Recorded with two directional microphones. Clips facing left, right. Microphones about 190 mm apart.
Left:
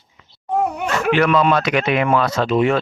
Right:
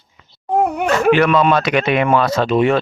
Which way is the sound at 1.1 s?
25° right (ahead or behind).